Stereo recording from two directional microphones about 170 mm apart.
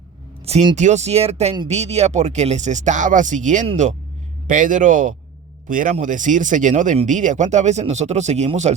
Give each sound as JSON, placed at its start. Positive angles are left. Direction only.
{"t": 0.4, "sound": "speech", "side_deg": -30}
{"t": 0.8, "sound": "speech", "side_deg": -45}